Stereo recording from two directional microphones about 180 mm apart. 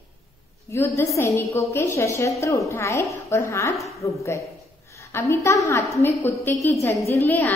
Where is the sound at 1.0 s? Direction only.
15° left (ahead or behind).